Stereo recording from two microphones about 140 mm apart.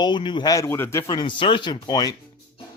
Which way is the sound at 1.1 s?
35° left (ahead or behind).